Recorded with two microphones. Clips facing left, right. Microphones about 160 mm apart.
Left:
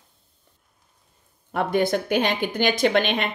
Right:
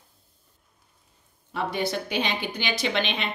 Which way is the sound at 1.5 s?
55° left (ahead or behind).